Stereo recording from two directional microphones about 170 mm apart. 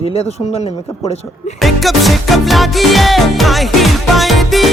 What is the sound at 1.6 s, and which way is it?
Music, centre (ahead or behind).